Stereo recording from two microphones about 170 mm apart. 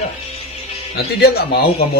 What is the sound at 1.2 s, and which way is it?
Speech, 70° left (ahead or behind).